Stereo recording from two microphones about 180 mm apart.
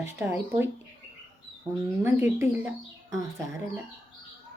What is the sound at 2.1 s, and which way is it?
Speech, 10° right (ahead or behind).